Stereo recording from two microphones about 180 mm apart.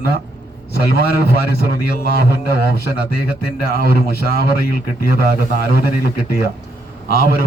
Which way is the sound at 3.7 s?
55° left (ahead or behind).